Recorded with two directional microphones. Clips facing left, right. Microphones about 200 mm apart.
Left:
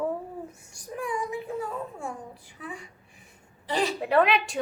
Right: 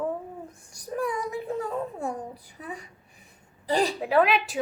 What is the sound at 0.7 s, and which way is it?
A child's voice, 40° right (ahead or behind).